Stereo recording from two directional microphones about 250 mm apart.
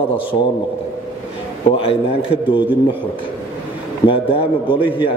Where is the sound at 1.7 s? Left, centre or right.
Left.